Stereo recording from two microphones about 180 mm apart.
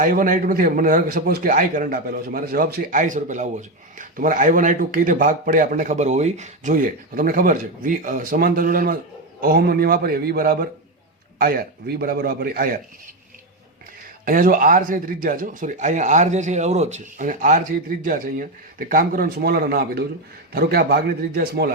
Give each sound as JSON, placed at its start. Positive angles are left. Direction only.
{"t": 0.0, "sound": "a man's voice", "side_deg": -50}
{"t": 14.3, "sound": "a man's voice", "side_deg": -50}